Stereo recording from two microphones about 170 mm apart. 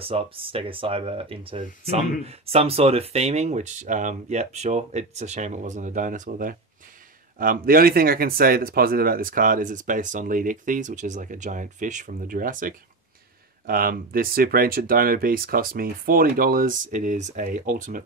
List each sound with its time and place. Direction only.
0.0 s speech: 35° right (ahead or behind); by 18.0 s 50° right (ahead or behind)